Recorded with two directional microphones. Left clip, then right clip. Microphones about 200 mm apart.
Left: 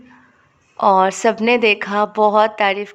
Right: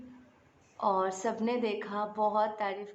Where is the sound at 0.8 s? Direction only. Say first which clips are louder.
Left 16 dB; 30° left (ahead or behind).